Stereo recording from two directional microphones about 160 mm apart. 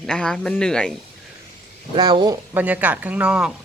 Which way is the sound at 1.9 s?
30° right (ahead or behind).